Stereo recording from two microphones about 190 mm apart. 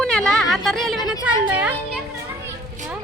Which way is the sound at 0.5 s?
Centre (ahead or behind).